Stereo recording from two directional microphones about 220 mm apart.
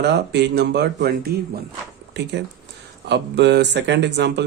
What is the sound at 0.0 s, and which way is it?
Speech, 50° right (ahead or behind).